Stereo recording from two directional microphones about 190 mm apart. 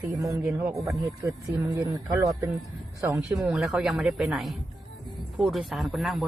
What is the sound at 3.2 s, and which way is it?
Speech, 5° right (ahead or behind).